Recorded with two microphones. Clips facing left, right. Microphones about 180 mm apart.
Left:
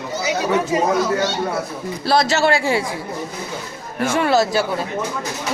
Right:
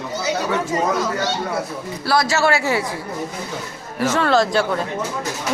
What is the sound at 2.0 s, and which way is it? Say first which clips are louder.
Speech: left 1 dB; 20° left (ahead or behind).